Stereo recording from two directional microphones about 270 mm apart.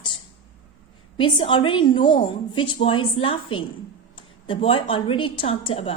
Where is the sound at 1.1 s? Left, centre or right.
Centre.